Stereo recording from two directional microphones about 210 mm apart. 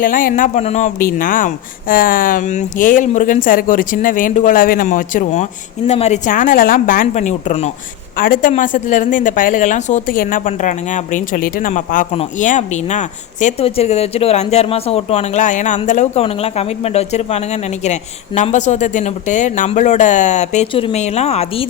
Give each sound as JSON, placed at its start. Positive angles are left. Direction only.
{"t": 0.0, "sound": "speech", "side_deg": 40}